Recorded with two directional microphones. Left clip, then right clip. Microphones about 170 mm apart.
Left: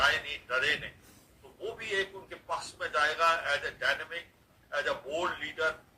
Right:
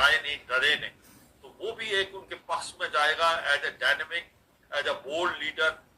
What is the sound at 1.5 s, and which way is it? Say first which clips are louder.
A man's voice: right 4 dB; 20° right (ahead or behind).